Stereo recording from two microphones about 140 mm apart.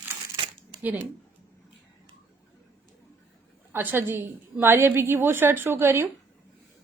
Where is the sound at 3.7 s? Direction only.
15° right (ahead or behind).